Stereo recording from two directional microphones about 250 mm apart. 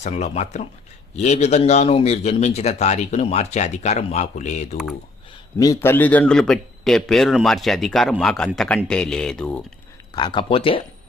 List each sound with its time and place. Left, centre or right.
0.0 s a man's voice: left
5.5 s a man's voice: centre
10.2 s a man's voice: centre